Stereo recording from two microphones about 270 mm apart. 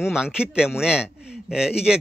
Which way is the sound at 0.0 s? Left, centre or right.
Centre.